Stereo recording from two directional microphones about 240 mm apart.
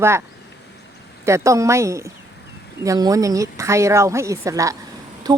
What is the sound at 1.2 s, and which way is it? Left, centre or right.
Speech, centre.